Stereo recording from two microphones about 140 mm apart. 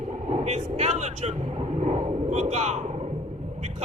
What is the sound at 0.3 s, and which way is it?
Speech, 50° right (ahead or behind).